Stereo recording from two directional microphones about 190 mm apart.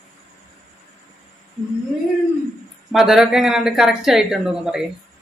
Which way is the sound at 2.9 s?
Centre (ahead or behind).